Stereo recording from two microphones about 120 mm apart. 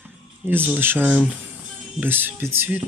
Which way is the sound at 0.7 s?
15° right (ahead or behind).